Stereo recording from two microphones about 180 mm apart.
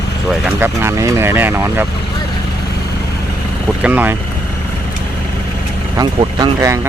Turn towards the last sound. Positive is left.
turn(degrees=-15)  # may be behind; listen again after turning